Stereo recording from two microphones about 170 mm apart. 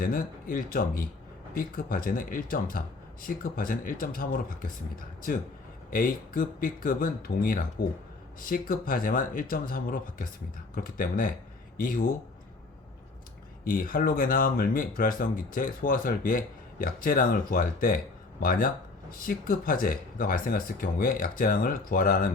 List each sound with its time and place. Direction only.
0.0 s speech: 55° left (ahead or behind)
13.7 s speech: 55° left (ahead or behind)